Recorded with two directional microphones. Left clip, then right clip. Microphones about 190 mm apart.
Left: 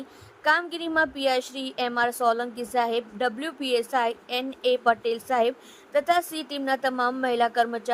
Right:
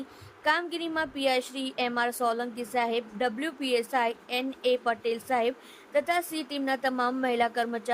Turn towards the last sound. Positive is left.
turn(degrees=20)  # may be behind; listen again after turning